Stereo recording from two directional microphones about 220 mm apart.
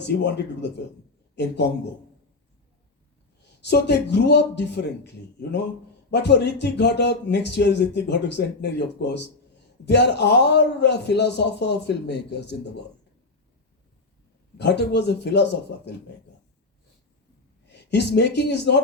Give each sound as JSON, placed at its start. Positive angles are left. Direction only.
{"t": 0.0, "sound": "speech", "side_deg": 50}
{"t": 3.6, "sound": "speech", "side_deg": 50}
{"t": 14.6, "sound": "speech", "side_deg": 50}
{"t": 17.7, "sound": "speech", "side_deg": 50}